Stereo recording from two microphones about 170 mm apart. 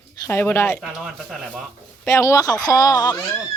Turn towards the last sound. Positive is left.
turn(degrees=25)  # may be behind; listen again after turning